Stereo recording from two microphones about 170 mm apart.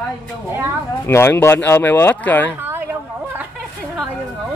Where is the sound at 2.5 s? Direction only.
15° right (ahead or behind).